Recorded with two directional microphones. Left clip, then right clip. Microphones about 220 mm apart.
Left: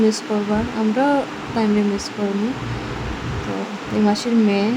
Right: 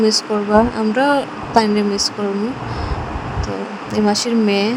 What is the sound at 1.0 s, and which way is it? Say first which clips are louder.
Speech: right 3 dB; 30° right (ahead or behind).